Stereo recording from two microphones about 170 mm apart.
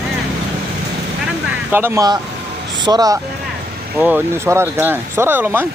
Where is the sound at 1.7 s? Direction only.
15° right (ahead or behind).